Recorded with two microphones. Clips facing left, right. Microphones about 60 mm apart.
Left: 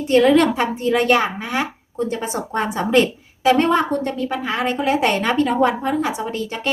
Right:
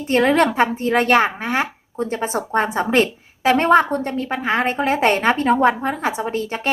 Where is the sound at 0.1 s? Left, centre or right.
Right.